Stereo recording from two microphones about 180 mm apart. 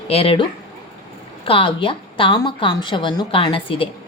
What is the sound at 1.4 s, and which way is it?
A woman's voice, 30° left (ahead or behind).